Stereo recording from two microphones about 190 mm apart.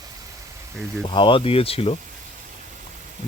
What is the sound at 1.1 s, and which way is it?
Speech, 25° left (ahead or behind).